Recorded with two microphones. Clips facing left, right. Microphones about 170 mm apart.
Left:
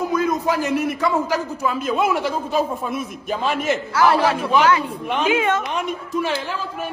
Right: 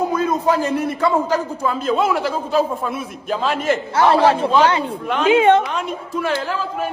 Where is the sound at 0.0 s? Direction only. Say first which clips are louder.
Right 1 dB; 30° right (ahead or behind).